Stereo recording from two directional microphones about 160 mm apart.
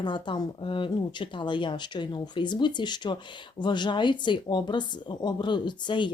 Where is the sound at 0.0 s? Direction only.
30° left (ahead or behind).